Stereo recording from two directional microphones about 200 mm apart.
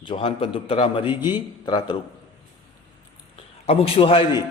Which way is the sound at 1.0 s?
10° right (ahead or behind).